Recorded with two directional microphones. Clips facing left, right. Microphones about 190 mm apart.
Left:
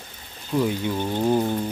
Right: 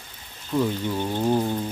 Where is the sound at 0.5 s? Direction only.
5° left (ahead or behind).